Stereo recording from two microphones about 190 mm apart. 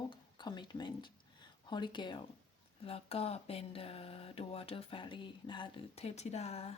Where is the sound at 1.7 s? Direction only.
25° left (ahead or behind).